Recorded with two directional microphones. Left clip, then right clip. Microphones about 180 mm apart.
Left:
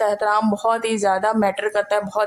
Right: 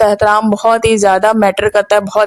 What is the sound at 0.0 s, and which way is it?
Speech, 40° right (ahead or behind).